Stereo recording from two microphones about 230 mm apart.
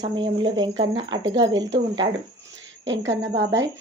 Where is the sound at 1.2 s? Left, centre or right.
Right.